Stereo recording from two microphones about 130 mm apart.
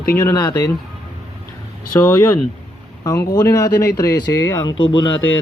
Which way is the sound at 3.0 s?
25° left (ahead or behind).